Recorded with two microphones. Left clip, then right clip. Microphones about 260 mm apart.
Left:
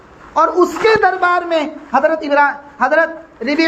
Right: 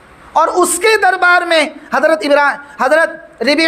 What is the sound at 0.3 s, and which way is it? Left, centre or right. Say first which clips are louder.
A man's voice: right 1 dB; right.